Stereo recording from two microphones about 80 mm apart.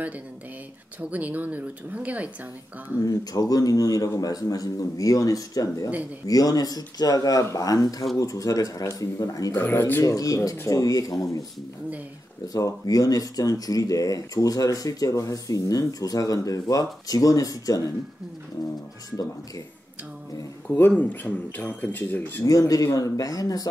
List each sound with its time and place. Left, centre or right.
1.1 s speech: centre
3.1 s speech: left
9.6 s speech: left
10.0 s speech: left
12.5 s speech: left
20.6 s speech: left
22.4 s speech: left